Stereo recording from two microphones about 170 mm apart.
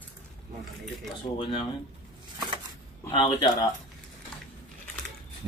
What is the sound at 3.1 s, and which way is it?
Speech, 25° left (ahead or behind).